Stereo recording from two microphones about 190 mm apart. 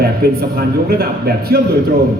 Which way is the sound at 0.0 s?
55° right (ahead or behind).